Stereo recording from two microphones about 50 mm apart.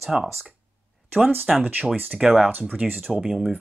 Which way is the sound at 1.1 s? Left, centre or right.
Right.